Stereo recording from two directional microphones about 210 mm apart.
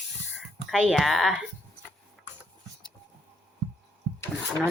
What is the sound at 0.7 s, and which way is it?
Speech, centre (ahead or behind).